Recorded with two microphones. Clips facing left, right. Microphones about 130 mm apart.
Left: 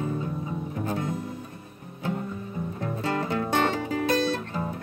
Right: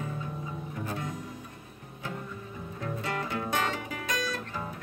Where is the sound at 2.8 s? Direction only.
30° left (ahead or behind).